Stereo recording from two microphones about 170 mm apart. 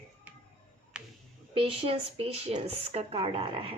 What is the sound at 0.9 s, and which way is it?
Music, 5° right (ahead or behind).